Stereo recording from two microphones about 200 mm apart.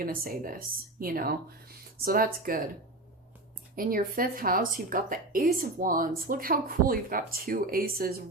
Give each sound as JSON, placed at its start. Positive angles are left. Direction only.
{"t": 0.0, "sound": "speech", "side_deg": -45}
{"t": 3.8, "sound": "speech", "side_deg": -45}